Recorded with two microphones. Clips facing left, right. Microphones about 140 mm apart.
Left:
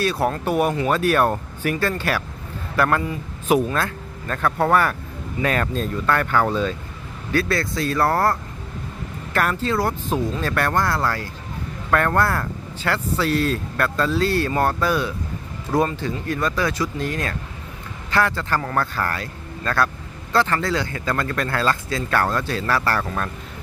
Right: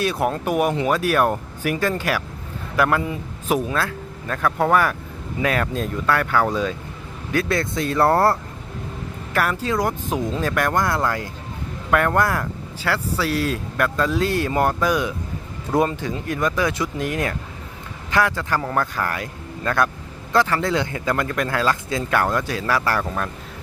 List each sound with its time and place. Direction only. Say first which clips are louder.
0.0 s speech: even; 15° right (ahead or behind)
9.3 s speech: even; 10° right (ahead or behind)